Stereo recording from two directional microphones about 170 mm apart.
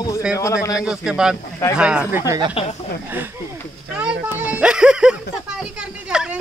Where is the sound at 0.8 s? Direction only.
5° right (ahead or behind).